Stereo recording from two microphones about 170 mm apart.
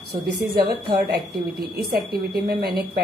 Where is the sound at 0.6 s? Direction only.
65° right (ahead or behind).